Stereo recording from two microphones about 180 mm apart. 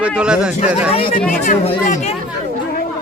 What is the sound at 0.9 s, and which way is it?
Speech, 30° left (ahead or behind).